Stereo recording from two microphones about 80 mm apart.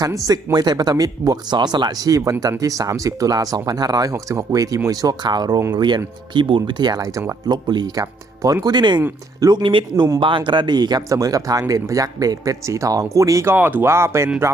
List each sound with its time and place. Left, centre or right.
0.0 s speech: right
0.5 s speech: right
4.1 s speech: right
6.3 s speech: right
7.5 s speech: right
8.0 s speech: right
8.6 s speech: right
11.1 s speech: right
13.5 s speech: right
13.8 s speech: right